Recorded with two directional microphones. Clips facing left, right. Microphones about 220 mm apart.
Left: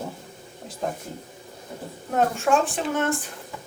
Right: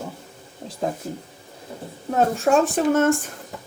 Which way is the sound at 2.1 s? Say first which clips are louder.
Right 3 dB; 35° right (ahead or behind).